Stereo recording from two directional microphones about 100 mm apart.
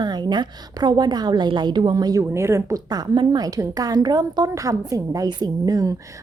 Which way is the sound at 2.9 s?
40° right (ahead or behind).